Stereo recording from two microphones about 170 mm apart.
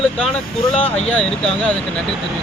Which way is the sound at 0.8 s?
40° left (ahead or behind).